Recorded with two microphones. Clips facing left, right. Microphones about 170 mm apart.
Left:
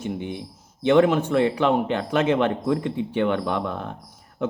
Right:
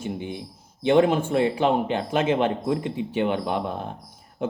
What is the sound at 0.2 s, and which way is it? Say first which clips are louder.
Speech: left 1 dB; 20° left (ahead or behind).